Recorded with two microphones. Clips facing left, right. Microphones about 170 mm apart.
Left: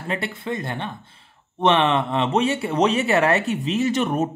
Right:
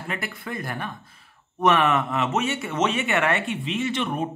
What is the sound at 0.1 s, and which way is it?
Speech, 25° left (ahead or behind).